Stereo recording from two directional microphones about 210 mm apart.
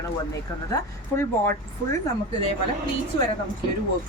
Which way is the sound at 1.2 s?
10° left (ahead or behind).